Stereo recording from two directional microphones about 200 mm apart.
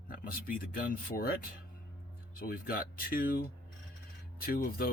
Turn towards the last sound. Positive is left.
turn(degrees=45)  # may be behind; listen again after turning